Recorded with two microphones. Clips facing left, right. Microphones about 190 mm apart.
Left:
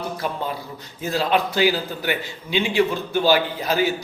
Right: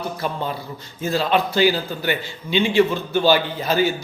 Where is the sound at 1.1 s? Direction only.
10° left (ahead or behind).